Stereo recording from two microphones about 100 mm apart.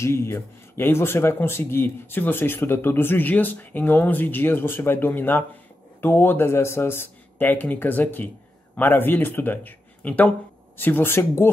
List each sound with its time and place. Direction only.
0.0 s speech: 25° left (ahead or behind)